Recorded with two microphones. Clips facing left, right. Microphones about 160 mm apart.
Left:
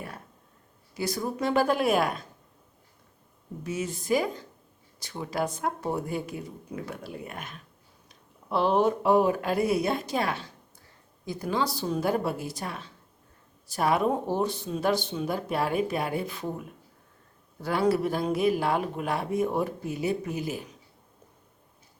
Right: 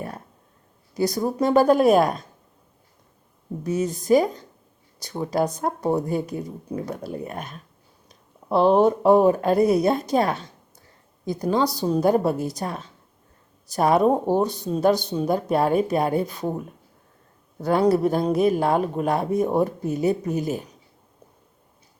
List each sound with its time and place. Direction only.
0.9 s a man's voice: 40° right (ahead or behind)
3.6 s a man's voice: 40° right (ahead or behind)